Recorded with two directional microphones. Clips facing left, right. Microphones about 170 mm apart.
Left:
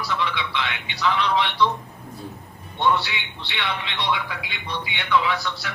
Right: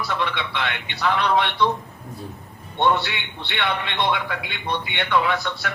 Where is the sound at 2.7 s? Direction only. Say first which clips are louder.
Right 1 dB; 55° right (ahead or behind).